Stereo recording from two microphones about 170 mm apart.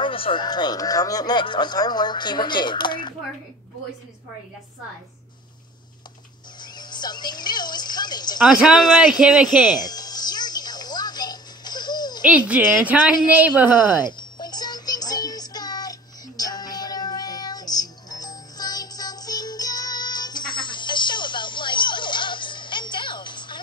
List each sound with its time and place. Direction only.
0.0 s speech: 30° left (ahead or behind)
6.6 s speech: 25° left (ahead or behind)
8.5 s speech: 5° right (ahead or behind)
9.8 s music: 25° left (ahead or behind)
12.3 s speech: 10° right (ahead or behind)
14.0 s music: 25° left (ahead or behind)